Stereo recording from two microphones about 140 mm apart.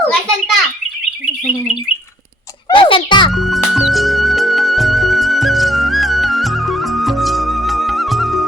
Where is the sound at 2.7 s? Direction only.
40° left (ahead or behind).